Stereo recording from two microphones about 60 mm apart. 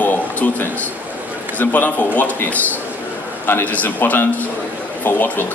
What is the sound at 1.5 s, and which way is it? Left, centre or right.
A man's voice, left.